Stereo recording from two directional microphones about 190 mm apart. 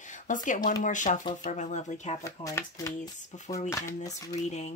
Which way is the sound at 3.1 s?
40° left (ahead or behind).